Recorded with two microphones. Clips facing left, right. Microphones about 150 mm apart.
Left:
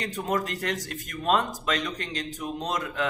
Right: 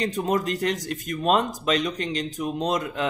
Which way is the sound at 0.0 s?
20° right (ahead or behind).